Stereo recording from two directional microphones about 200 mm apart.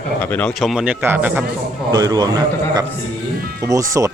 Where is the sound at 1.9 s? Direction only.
20° right (ahead or behind).